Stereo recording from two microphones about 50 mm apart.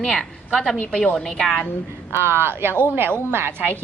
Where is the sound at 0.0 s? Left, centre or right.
Centre.